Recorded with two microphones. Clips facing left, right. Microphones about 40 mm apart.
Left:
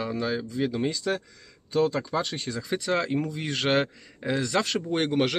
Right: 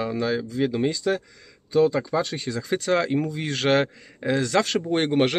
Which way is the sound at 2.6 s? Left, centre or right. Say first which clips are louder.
Right 4 dB; right.